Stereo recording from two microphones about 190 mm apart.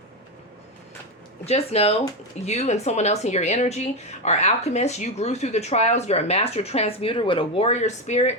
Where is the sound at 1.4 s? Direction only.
30° left (ahead or behind).